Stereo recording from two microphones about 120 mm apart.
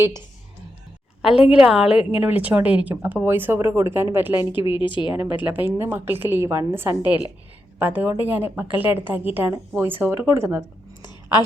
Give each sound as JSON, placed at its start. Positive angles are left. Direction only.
{"t": 1.2, "sound": "a woman's voice", "side_deg": -5}
{"t": 4.7, "sound": "speech", "side_deg": 45}
{"t": 5.1, "sound": "a woman's voice", "side_deg": -20}